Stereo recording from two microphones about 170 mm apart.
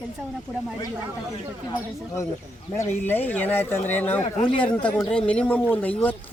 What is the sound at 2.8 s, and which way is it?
Speech, 10° left (ahead or behind).